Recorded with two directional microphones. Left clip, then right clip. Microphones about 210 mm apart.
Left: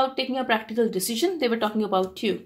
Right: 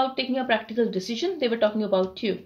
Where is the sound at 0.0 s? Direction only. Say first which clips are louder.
Left 1 dB; 40° left (ahead or behind).